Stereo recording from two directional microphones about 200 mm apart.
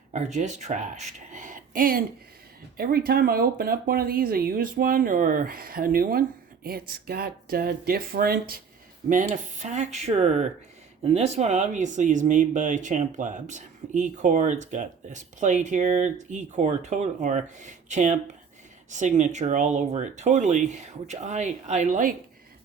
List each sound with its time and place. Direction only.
0.1 s speech: 35° right (ahead or behind)